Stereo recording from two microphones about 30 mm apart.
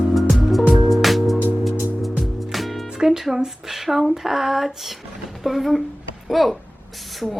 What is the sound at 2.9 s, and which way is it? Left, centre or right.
Music, centre.